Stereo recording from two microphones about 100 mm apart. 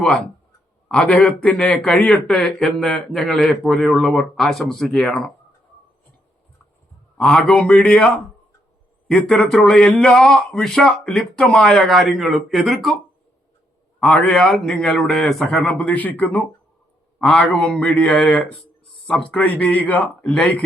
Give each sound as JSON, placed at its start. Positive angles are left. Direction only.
{"t": 0.9, "sound": "a man's voice", "side_deg": 5}
{"t": 7.2, "sound": "a man's voice", "side_deg": 5}
{"t": 14.0, "sound": "a man's voice", "side_deg": 10}
{"t": 15.8, "sound": "speech", "side_deg": 15}